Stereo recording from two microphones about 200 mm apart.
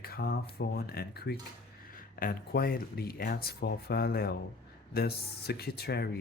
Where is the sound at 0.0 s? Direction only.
50° left (ahead or behind).